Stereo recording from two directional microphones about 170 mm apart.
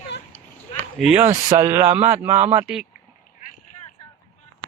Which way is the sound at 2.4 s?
35° right (ahead or behind).